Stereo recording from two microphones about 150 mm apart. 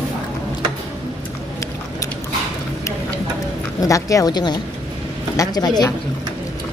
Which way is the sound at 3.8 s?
20° left (ahead or behind).